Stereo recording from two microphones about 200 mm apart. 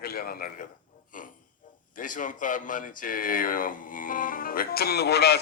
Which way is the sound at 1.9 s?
40° left (ahead or behind).